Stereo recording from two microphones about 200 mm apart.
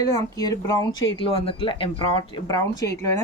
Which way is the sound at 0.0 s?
20° left (ahead or behind).